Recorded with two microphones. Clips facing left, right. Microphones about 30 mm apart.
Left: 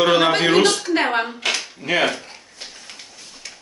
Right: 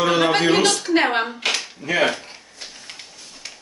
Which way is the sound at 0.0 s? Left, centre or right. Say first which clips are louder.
Left 2 dB; centre.